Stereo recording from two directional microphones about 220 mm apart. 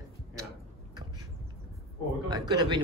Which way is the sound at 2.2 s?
20° right (ahead or behind).